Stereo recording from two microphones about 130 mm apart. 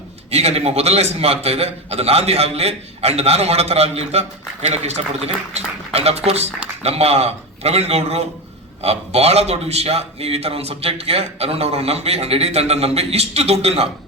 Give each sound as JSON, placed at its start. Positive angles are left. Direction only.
{"t": 0.3, "sound": "a man's voice", "side_deg": -55}